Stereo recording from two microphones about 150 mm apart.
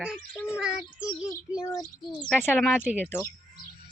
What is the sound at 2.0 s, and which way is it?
Speech, centre (ahead or behind).